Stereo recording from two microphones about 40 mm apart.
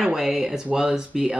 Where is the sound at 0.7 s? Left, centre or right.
Right.